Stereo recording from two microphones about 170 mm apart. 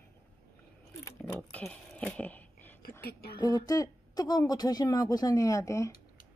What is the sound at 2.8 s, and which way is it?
Speech, 65° left (ahead or behind).